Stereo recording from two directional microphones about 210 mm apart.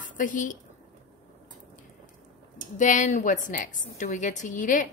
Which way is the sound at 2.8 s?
35° left (ahead or behind).